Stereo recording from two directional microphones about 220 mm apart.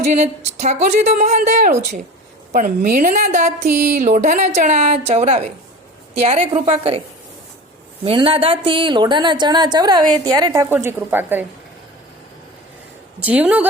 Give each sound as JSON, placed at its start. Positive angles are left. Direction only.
{"t": 0.0, "sound": "speech", "side_deg": -30}
{"t": 8.0, "sound": "speech", "side_deg": -25}
{"t": 13.1, "sound": "a woman's voice", "side_deg": -5}